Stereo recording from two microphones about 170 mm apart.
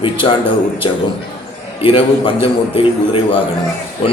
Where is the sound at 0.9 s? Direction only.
30° left (ahead or behind).